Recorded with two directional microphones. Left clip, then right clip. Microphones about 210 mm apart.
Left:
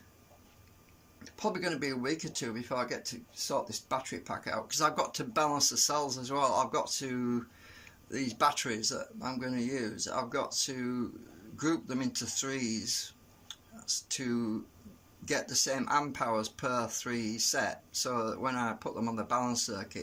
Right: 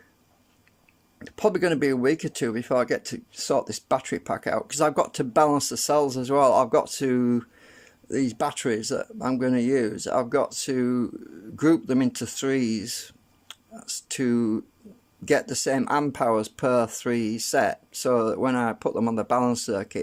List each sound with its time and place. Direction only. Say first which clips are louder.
1.2 s speech: right 11 dB; 40° right (ahead or behind)